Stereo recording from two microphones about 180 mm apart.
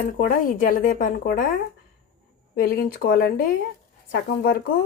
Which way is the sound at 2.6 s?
60° left (ahead or behind).